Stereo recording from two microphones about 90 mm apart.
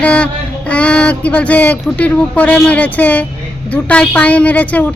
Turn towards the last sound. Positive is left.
turn(degrees=15)  # may be behind; listen again after turning